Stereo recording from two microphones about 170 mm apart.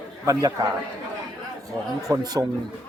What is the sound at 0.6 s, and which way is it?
Speech, 20° right (ahead or behind).